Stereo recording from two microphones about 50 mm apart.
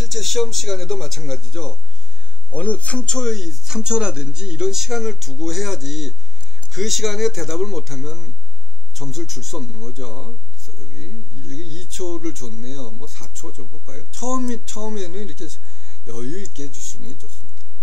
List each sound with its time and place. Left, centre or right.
0.0 s a man's voice: centre
2.5 s speech: left
3.3 s a man's voice: centre